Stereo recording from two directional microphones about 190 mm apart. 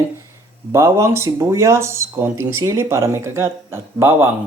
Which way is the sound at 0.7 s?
15° right (ahead or behind).